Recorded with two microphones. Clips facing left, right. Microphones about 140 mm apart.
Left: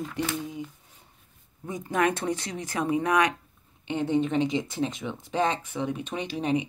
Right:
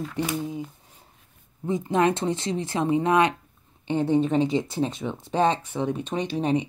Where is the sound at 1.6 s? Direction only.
25° right (ahead or behind).